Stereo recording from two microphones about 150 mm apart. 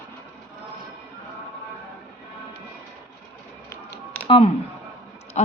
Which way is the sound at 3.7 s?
15° left (ahead or behind).